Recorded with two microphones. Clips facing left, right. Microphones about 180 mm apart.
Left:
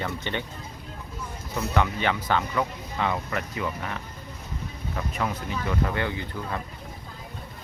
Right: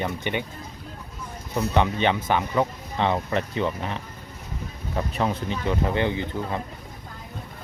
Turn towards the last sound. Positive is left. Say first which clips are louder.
# right 4 dB
turn(degrees=-20)  # may be behind; listen again after turning